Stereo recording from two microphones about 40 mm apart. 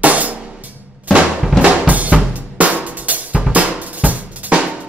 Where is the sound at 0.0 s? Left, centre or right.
Right.